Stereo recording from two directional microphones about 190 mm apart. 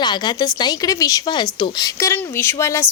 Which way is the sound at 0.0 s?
20° left (ahead or behind).